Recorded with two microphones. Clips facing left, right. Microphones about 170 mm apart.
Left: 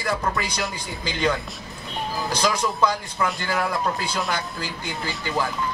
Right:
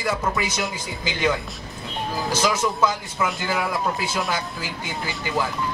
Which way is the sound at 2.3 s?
5° right (ahead or behind).